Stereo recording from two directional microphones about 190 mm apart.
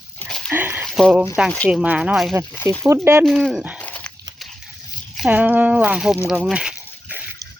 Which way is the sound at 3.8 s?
5° left (ahead or behind).